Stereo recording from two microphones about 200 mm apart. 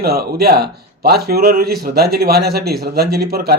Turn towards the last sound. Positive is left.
turn(degrees=-50)  # may be behind; listen again after turning